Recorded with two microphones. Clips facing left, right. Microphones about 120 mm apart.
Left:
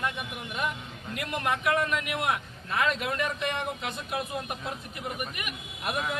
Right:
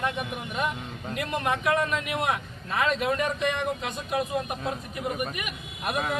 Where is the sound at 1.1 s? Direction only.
25° right (ahead or behind).